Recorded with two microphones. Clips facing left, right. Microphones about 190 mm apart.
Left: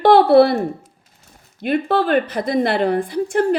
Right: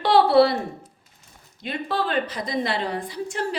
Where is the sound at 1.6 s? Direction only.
55° left (ahead or behind).